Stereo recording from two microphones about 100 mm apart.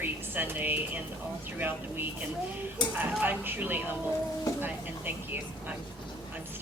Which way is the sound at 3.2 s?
20° right (ahead or behind).